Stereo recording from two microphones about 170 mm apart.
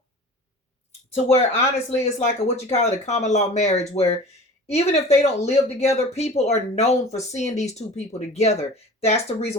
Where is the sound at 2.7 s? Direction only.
40° left (ahead or behind).